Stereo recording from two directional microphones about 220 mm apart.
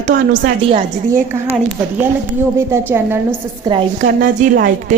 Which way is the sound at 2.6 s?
10° right (ahead or behind).